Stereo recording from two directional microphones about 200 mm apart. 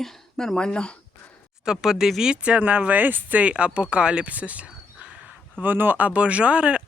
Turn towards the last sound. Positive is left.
turn(degrees=-5)  # may be behind; listen again after turning